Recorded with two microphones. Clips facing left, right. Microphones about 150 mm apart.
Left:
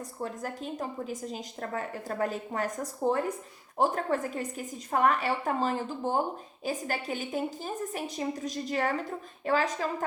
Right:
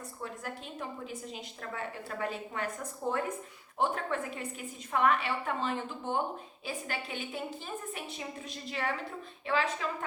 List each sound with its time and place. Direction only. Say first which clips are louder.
0.2 s a woman's voice: left 6 dB; 40° left (ahead or behind)